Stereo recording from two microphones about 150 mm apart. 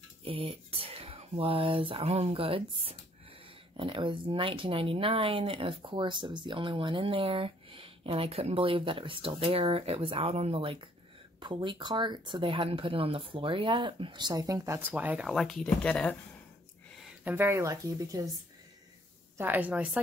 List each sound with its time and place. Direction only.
0.2 s speech: 40° right (ahead or behind); by 15.2 s 10° right (ahead or behind)
15.2 s speech: centre (ahead or behind)
17.0 s speech: 10° right (ahead or behind)
19.3 s a woman's voice: 10° right (ahead or behind)